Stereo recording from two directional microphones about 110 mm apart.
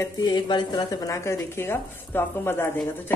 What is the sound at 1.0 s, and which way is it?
Speech, 25° left (ahead or behind).